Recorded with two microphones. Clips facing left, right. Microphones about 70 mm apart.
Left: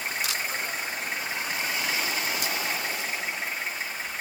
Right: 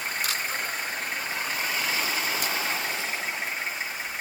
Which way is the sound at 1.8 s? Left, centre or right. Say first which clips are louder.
Right 1 dB; right.